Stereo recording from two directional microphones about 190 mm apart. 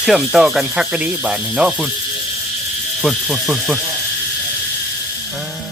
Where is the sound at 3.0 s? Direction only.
Centre (ahead or behind).